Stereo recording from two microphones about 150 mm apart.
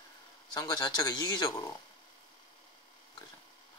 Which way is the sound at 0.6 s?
30° left (ahead or behind).